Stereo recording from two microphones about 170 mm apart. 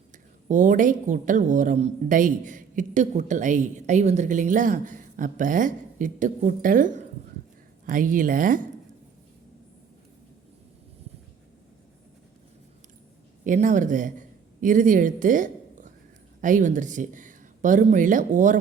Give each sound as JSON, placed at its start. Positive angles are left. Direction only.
{"t": 0.4, "sound": "a woman's voice", "side_deg": -50}
{"t": 13.4, "sound": "speech", "side_deg": -50}